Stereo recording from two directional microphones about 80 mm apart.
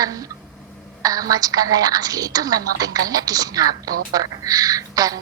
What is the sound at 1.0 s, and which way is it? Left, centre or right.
A woman's voice, right.